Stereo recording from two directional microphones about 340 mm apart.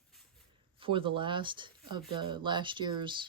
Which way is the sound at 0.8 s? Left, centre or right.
Centre.